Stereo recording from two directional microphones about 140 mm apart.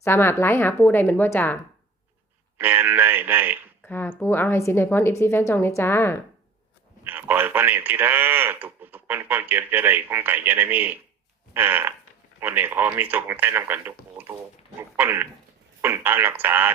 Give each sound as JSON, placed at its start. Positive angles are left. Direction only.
{"t": 0.0, "sound": "a woman's voice", "side_deg": 15}
{"t": 2.6, "sound": "speech", "side_deg": -15}
{"t": 3.8, "sound": "a woman's voice", "side_deg": 15}
{"t": 7.0, "sound": "speech", "side_deg": -15}
{"t": 14.2, "sound": "a sound", "side_deg": -15}
{"t": 14.8, "sound": "speech", "side_deg": -15}